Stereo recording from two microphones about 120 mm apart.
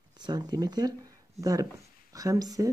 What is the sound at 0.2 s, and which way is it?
Speech, 35° right (ahead or behind).